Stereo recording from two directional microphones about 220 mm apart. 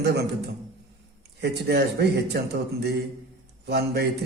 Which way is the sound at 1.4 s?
50° right (ahead or behind).